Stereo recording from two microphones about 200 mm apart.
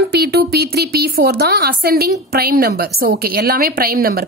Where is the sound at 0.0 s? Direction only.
55° right (ahead or behind).